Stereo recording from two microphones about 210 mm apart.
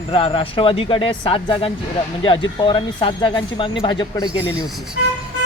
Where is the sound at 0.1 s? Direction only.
25° left (ahead or behind).